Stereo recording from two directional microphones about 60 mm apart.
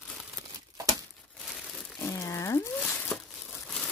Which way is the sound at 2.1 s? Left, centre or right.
Left.